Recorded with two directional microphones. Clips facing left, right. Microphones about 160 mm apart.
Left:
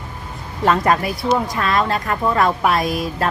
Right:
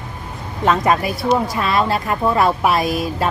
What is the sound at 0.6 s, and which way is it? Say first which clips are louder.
A woman's voice: even; centre (ahead or behind).